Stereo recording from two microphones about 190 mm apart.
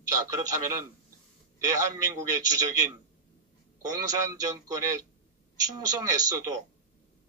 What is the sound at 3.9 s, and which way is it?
A man's voice, 20° right (ahead or behind).